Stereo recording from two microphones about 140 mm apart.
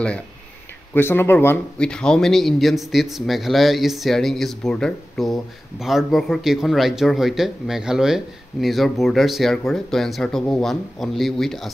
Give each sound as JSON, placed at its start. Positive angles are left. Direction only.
{"t": 0.9, "sound": "speech", "side_deg": 15}